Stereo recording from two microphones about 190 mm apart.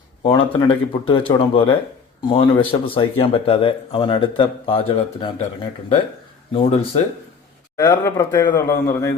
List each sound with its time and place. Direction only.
0.2 s speech: 25° left (ahead or behind)
7.8 s speech: 15° left (ahead or behind)